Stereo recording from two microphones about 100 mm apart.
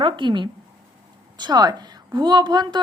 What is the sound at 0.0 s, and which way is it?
A woman's voice, 55° right (ahead or behind).